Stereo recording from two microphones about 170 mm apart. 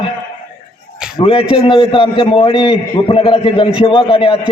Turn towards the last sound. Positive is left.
turn(degrees=30)  # may be behind; listen again after turning